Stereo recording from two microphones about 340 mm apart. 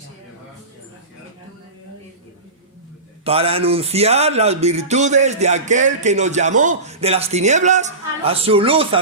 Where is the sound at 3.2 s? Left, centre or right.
Centre.